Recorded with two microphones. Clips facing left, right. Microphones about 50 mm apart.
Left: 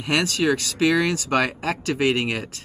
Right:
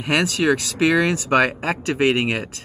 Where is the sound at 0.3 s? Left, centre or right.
Centre.